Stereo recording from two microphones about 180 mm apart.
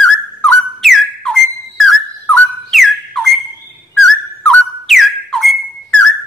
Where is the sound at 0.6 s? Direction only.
Centre (ahead or behind).